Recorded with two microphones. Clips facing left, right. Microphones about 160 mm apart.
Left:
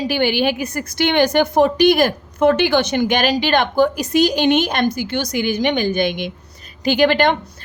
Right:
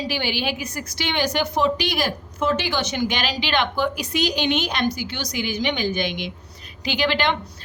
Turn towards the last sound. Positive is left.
turn(degrees=50)  # may be behind; listen again after turning